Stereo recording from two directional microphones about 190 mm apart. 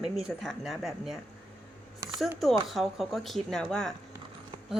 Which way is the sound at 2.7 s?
Centre (ahead or behind).